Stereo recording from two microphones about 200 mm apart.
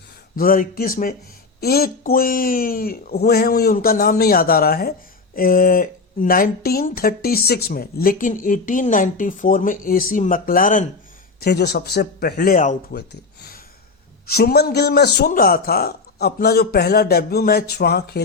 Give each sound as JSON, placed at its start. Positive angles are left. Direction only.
{"t": 0.3, "sound": "speech", "side_deg": 45}
{"t": 11.3, "sound": "speech", "side_deg": 55}
{"t": 12.9, "sound": "speech", "side_deg": 55}